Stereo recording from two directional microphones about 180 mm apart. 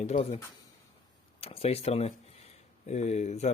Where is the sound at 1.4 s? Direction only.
35° left (ahead or behind).